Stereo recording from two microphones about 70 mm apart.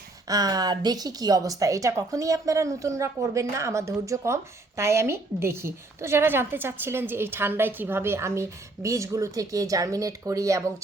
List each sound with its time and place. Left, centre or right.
0.3 s a woman's voice: right